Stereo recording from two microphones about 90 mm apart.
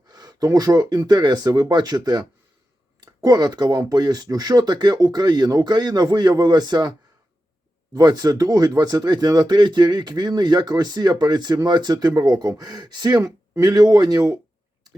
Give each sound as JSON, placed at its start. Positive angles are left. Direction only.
{"t": 0.1, "sound": "speech", "side_deg": -50}
{"t": 7.9, "sound": "speech", "side_deg": -45}